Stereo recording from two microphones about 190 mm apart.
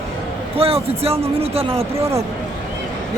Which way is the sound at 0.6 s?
30° right (ahead or behind).